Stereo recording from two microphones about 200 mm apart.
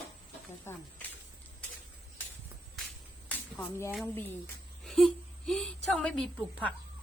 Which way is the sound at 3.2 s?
5° left (ahead or behind).